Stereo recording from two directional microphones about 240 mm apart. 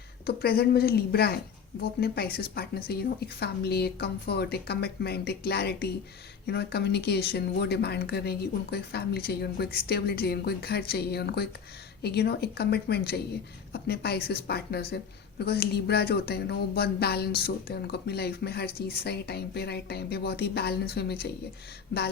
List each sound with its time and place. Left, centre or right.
0.3 s a woman's voice: left